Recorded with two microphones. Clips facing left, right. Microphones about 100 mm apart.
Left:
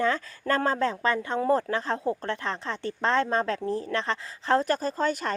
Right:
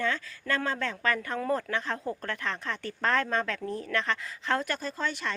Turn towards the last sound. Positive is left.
turn(degrees=45)  # may be behind; listen again after turning